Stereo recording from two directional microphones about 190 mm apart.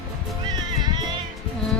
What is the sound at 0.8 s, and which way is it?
Music, 20° right (ahead or behind).